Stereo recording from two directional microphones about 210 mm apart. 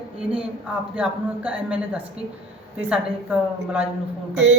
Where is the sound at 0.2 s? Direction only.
5° right (ahead or behind).